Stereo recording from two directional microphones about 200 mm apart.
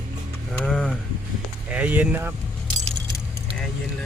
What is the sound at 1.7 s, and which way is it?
Speech, 5° right (ahead or behind).